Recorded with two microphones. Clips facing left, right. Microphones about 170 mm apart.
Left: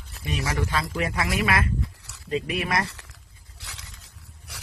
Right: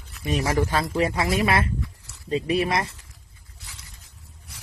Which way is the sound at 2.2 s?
30° right (ahead or behind).